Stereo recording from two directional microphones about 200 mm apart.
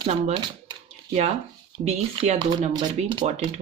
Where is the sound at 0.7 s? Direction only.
30° right (ahead or behind).